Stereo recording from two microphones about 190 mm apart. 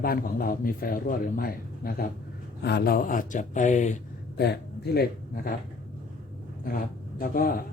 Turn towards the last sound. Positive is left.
turn(degrees=50)  # may be behind; listen again after turning